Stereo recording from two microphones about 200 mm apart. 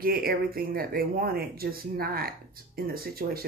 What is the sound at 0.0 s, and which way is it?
Speech, 50° right (ahead or behind).